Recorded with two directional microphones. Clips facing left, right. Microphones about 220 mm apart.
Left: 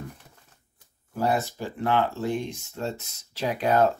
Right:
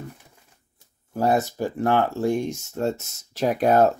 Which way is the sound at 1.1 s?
45° right (ahead or behind).